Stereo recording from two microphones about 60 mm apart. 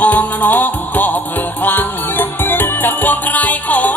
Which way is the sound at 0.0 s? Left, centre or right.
Left.